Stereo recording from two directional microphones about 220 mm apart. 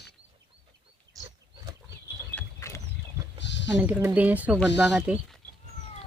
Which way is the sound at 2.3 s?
15° left (ahead or behind).